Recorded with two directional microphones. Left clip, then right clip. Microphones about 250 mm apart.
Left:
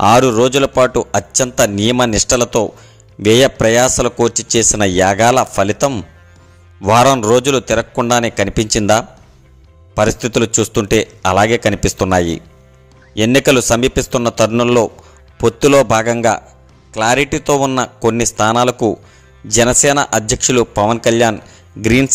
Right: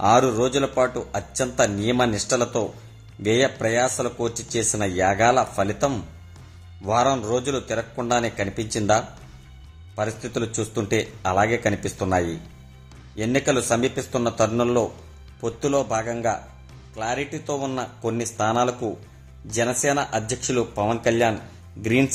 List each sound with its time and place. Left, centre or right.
0.0 s speech: left